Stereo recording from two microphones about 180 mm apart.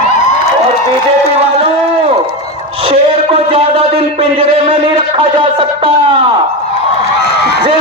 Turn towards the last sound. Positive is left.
turn(degrees=-30)  # may be behind; listen again after turning